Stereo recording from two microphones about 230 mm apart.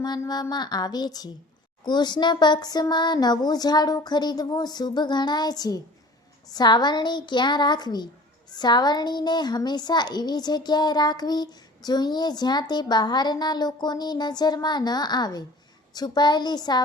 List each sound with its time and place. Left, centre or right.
0.0 s a woman's voice: centre